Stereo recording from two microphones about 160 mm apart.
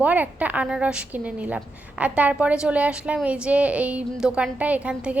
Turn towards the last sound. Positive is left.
turn(degrees=-5)  # may be behind; listen again after turning